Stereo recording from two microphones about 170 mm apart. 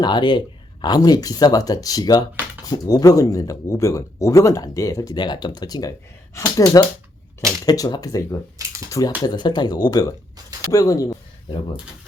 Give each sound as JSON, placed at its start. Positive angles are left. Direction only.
{"t": 0.0, "sound": "speech", "side_deg": 25}